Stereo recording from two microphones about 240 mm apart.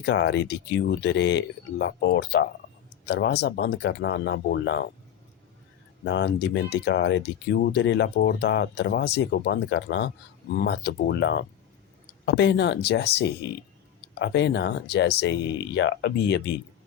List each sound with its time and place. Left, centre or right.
0.0 s speech: left
6.1 s speech: left